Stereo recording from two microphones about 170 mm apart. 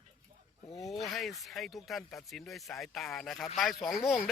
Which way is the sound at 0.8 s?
Centre (ahead or behind).